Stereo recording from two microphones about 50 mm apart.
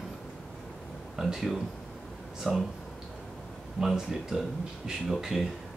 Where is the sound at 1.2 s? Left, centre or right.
Centre.